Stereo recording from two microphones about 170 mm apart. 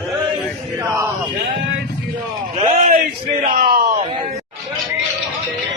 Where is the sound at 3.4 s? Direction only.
60° right (ahead or behind).